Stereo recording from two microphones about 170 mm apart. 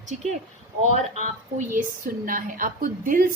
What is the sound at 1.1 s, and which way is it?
A woman's voice, 50° right (ahead or behind).